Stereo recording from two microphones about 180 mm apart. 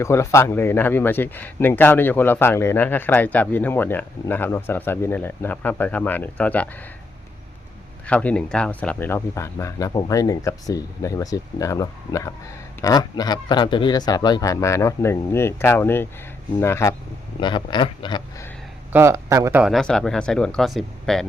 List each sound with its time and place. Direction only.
0.0 s speech: 15° left (ahead or behind)
8.0 s speech: 5° left (ahead or behind)
17.4 s speech: 25° left (ahead or behind)
18.9 s speech: 15° right (ahead or behind)
19.6 s speech: centre (ahead or behind)